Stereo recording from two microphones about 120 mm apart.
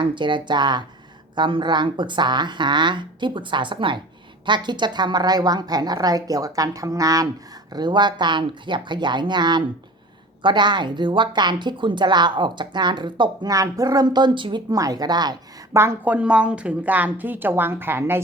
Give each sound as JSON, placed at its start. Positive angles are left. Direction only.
{"t": 0.0, "sound": "a woman's voice", "side_deg": -40}
{"t": 14.8, "sound": "a woman's voice", "side_deg": -30}
{"t": 15.7, "sound": "a woman's voice", "side_deg": -20}